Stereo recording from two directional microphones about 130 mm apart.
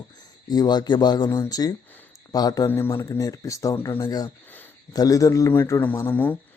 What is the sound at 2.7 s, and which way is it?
Speech, 20° left (ahead or behind).